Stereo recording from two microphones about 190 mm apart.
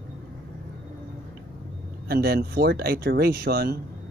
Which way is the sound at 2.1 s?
55° right (ahead or behind).